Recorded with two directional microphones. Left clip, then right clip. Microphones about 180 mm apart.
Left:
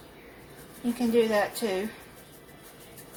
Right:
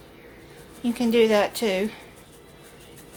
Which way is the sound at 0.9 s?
45° right (ahead or behind).